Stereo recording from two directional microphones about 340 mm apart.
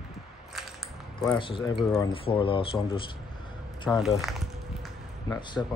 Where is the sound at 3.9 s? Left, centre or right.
Centre.